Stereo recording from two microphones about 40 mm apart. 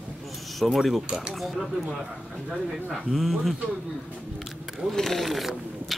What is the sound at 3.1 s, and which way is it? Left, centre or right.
Speech, centre.